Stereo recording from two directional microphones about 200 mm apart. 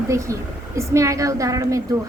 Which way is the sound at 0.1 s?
15° right (ahead or behind).